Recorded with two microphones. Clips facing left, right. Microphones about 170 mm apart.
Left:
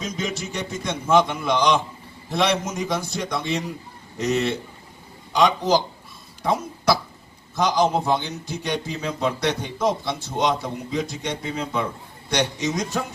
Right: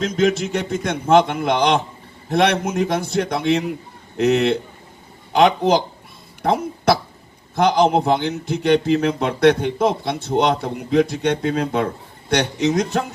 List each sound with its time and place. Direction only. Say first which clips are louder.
0.0 s a man's voice: right 10 dB; 55° right (ahead or behind)